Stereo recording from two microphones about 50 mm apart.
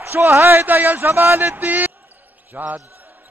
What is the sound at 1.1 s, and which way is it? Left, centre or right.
Speech, right.